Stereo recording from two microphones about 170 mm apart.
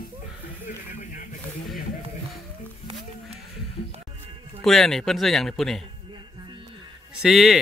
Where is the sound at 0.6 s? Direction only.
50° left (ahead or behind).